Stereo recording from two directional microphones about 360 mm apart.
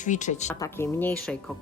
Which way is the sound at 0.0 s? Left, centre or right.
Centre.